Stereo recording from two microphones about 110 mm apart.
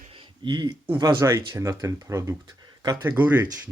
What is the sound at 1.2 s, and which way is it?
Speech, 25° right (ahead or behind).